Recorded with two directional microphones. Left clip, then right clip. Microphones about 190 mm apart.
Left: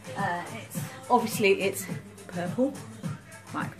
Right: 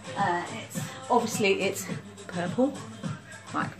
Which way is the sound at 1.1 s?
30° left (ahead or behind).